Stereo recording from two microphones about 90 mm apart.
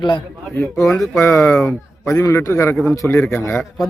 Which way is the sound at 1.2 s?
30° left (ahead or behind).